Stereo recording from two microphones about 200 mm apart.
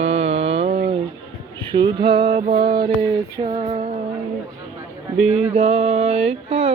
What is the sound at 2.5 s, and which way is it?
Music, 50° right (ahead or behind).